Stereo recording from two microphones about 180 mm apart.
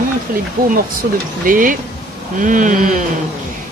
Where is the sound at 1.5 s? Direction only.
50° right (ahead or behind).